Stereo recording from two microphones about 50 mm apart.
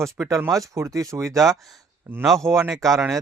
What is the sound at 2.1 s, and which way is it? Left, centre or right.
Speech, right.